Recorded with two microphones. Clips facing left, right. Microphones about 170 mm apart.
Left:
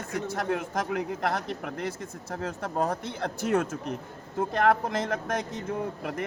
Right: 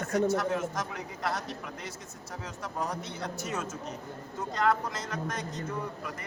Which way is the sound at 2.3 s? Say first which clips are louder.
Left 7 dB; 55° left (ahead or behind).